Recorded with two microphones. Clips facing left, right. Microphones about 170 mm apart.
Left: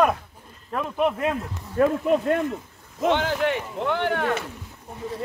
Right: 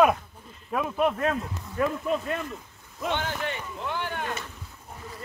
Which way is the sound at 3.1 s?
80° left.